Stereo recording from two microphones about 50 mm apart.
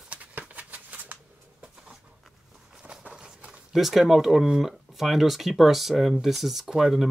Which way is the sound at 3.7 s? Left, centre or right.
Centre.